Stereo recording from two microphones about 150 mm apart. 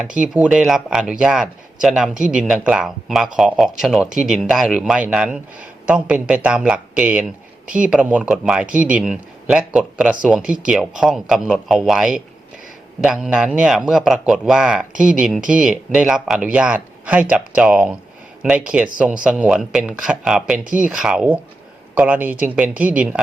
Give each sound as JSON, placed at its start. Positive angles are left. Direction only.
{"t": 0.1, "sound": "a man's voice", "side_deg": -5}